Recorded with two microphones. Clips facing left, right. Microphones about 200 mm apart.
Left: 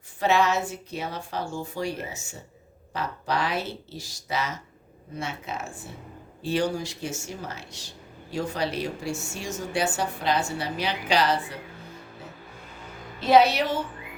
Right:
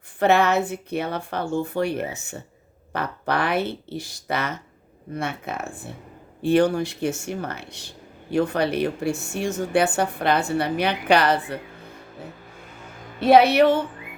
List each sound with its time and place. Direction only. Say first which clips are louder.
0.2 s speech: right 4 dB; 60° right (ahead or behind)
13.1 s speech: right 4 dB; 60° right (ahead or behind)